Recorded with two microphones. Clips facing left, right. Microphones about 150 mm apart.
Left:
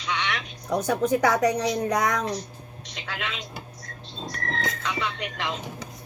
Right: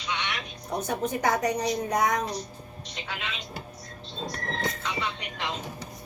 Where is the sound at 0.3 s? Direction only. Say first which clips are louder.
Left 5 dB; 90° left.